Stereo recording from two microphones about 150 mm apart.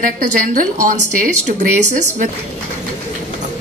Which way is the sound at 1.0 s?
55° right (ahead or behind).